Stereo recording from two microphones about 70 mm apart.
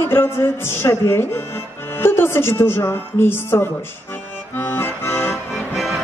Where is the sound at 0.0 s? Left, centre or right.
Left.